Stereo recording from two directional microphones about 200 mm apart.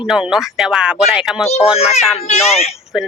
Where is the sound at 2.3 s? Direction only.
30° left (ahead or behind).